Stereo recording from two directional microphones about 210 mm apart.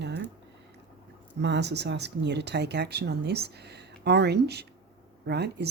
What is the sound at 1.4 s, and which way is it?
Speech, 55° right (ahead or behind).